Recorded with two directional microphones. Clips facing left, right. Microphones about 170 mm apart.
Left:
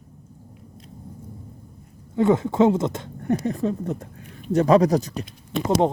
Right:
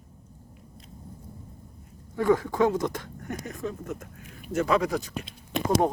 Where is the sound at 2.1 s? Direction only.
25° left (ahead or behind); by 5.2 s 40° left (ahead or behind).